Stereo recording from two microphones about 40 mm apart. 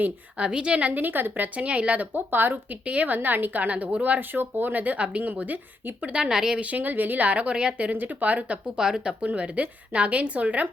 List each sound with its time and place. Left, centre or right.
0.3 s a woman's voice: right
1.0 s speech: right
1.5 s a woman's voice: right
2.1 s speech: right
2.8 s a woman's voice: right
3.2 s speech: right
6.0 s a woman's voice: right
6.6 s a woman's voice: right
7.5 s a woman's voice: right
7.8 s a woman's voice: right
8.7 s a woman's voice: centre
9.2 s a woman's voice: right